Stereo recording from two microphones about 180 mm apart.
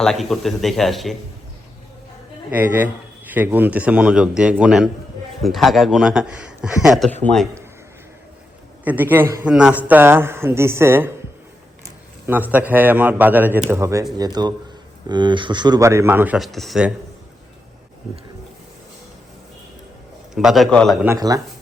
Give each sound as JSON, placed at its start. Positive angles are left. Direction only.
{"t": 0.0, "sound": "a man's voice", "side_deg": 0}
{"t": 2.5, "sound": "a man's voice", "side_deg": -10}
{"t": 8.8, "sound": "a man's voice", "side_deg": -10}
{"t": 12.2, "sound": "a man's voice", "side_deg": -10}
{"t": 20.3, "sound": "a man's voice", "side_deg": 0}
{"t": 21.0, "sound": "speech", "side_deg": -15}